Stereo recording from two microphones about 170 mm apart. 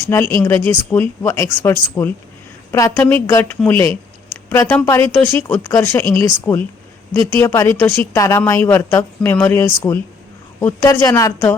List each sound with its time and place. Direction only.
0.3 s speech: 15° left (ahead or behind)